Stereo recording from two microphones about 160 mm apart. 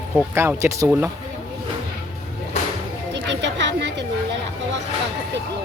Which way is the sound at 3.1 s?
90° right.